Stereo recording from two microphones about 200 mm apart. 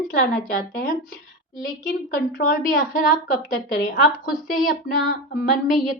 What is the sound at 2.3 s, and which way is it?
A woman's voice, 45° left (ahead or behind).